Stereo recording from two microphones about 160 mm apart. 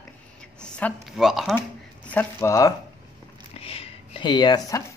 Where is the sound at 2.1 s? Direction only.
10° left (ahead or behind).